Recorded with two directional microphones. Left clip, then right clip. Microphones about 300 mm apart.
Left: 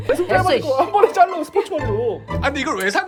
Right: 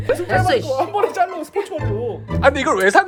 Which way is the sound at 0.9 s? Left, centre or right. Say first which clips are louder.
Left 6 dB; centre.